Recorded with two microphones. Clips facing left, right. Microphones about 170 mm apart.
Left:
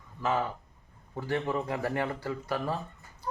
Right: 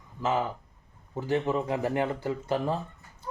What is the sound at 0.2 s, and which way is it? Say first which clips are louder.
Speech: right 2 dB; 15° right (ahead or behind).